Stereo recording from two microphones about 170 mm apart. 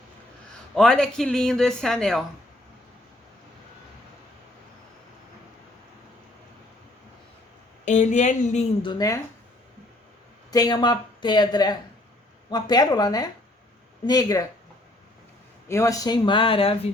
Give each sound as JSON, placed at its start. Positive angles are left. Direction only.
{"t": 0.8, "sound": "speech", "side_deg": 5}
{"t": 7.9, "sound": "speech", "side_deg": 45}
{"t": 8.8, "sound": "a woman's voice", "side_deg": 25}
{"t": 10.5, "sound": "a woman's voice", "side_deg": 25}
{"t": 15.7, "sound": "a woman's voice", "side_deg": 15}